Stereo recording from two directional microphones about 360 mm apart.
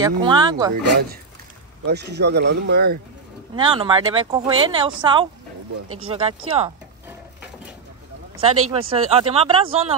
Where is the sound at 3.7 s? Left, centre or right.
Centre.